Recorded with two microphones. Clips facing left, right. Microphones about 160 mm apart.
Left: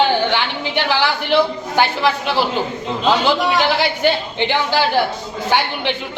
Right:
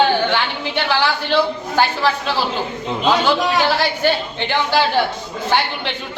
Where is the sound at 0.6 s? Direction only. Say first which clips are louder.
Left 1 dB; 15° left (ahead or behind).